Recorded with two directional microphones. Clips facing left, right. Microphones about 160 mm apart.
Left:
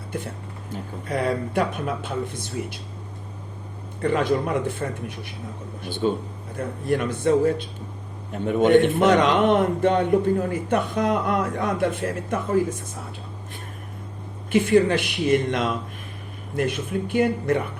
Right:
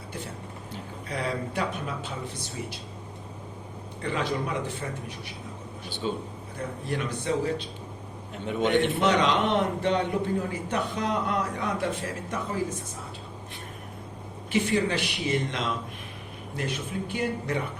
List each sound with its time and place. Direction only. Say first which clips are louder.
0.7 s speech: left 8 dB; 50° left (ahead or behind)
4.0 s a man's voice: left 7 dB; 50° left (ahead or behind)
14.5 s a man's voice: left 7 dB; 50° left (ahead or behind)